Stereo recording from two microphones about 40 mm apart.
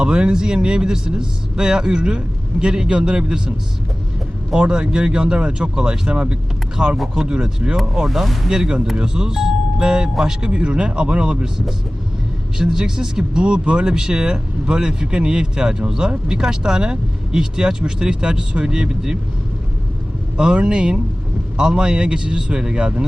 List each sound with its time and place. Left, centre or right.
0.0 s a man's voice: right
4.7 s a man's voice: right
7.9 s speech: centre
8.4 s a man's voice: centre
12.5 s a man's voice: centre
20.3 s a man's voice: right